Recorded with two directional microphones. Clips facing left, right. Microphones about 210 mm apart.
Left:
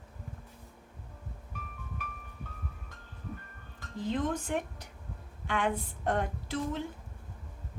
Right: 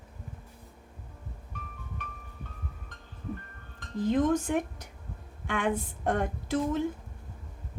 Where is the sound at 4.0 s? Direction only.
45° right (ahead or behind).